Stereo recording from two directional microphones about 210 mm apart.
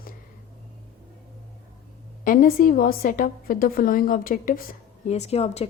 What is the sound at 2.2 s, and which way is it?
Speech, 40° left (ahead or behind).